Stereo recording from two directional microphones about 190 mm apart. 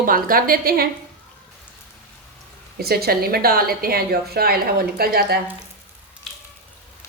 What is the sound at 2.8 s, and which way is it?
A woman's voice, 55° right (ahead or behind).